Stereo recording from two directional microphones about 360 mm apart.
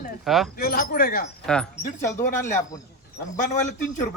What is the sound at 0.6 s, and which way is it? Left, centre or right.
Speech, left.